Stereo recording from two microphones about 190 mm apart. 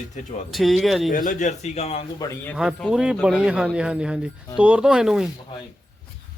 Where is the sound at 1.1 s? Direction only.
45° left (ahead or behind).